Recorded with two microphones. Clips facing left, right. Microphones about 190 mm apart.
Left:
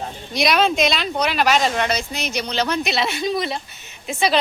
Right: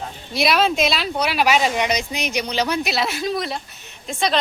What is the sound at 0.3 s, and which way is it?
Speech, 5° right (ahead or behind).